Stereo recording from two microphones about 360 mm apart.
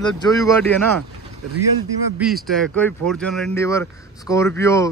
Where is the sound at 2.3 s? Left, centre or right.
Centre.